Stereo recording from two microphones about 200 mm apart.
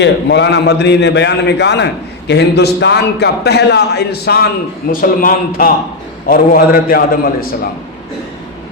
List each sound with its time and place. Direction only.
0.0 s a man's voice: 60° left (ahead or behind)